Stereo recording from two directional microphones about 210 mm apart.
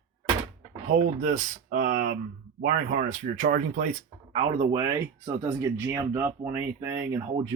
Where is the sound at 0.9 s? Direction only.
40° right (ahead or behind).